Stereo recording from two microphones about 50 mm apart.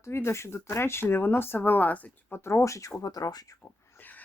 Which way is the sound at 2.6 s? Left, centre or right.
Left.